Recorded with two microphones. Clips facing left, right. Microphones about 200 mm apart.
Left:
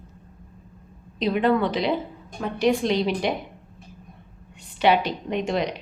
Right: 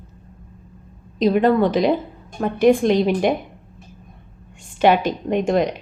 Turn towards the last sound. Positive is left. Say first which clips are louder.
# right 6 dB
turn(degrees=-50)  # may be behind; listen again after turning